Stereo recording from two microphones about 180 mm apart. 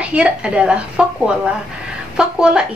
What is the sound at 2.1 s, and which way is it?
Speech, 5° right (ahead or behind).